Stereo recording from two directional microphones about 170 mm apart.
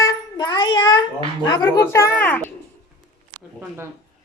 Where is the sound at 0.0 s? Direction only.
20° left (ahead or behind).